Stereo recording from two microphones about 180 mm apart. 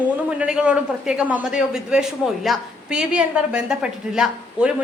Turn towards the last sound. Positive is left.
turn(degrees=-5)  # may be behind; listen again after turning